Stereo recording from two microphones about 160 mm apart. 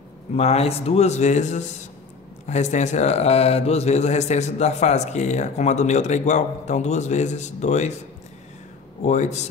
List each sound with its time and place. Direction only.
0.4 s speech: 40° left (ahead or behind)
9.0 s speech: 45° left (ahead or behind)